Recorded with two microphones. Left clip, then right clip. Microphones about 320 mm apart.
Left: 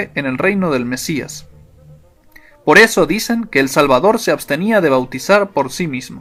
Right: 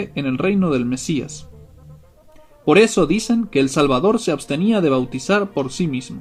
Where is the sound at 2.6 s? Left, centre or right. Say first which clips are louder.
Left 5 dB; left.